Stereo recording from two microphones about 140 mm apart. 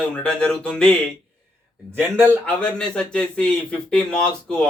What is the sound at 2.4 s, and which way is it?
A man's voice, 5° left (ahead or behind).